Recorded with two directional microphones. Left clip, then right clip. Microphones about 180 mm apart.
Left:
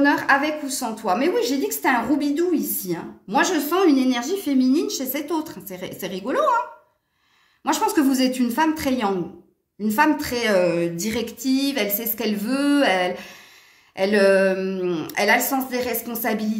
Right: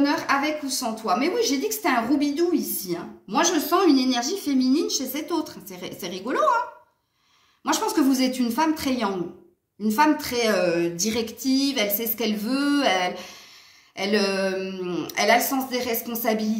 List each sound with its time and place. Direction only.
0.0 s a woman's voice: 55° left (ahead or behind)
7.6 s speech: 50° left (ahead or behind)